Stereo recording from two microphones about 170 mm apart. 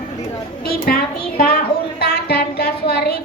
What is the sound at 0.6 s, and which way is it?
Speech, 60° left (ahead or behind).